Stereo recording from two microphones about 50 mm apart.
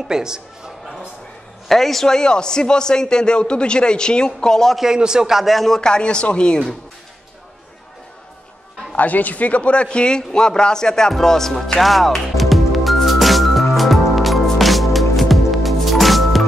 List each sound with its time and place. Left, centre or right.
0.1 s speech: centre
1.7 s a man's voice: centre
4.7 s speech: centre
5.8 s a man's voice: centre
8.9 s a sound: left; by 16.4 s centre